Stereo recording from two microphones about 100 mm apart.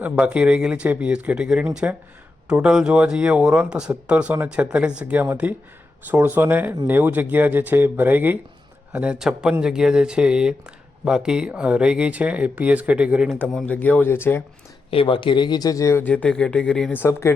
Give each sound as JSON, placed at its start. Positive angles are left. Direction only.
{"t": 0.0, "sound": "speech", "side_deg": -15}
{"t": 13.7, "sound": "speech", "side_deg": 15}
{"t": 14.8, "sound": "speech", "side_deg": 65}
{"t": 16.0, "sound": "speech", "side_deg": 10}
{"t": 16.9, "sound": "speech", "side_deg": 25}